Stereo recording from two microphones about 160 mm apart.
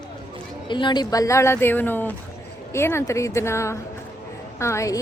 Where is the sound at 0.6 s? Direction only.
30° left (ahead or behind).